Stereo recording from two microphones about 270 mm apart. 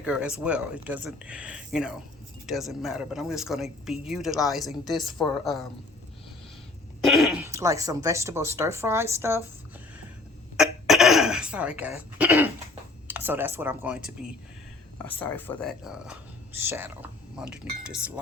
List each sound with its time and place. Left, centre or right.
0.0 s speech: centre
7.0 s speech: centre
10.6 s throat clearing: centre
13.1 s speech: centre
14.9 s speech: centre